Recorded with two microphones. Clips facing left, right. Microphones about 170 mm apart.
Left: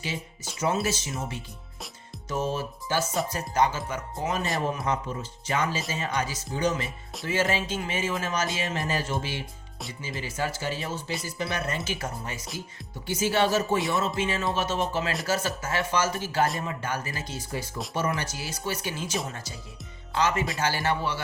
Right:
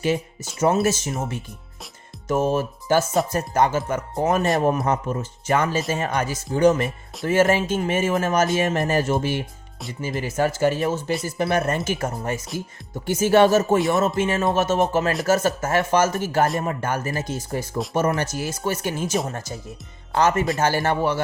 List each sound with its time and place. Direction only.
0.6 s speech: 50° right (ahead or behind)
20.1 s speech: 50° right (ahead or behind)